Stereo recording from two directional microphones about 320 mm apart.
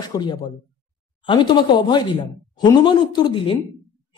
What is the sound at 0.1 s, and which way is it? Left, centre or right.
Speech, centre.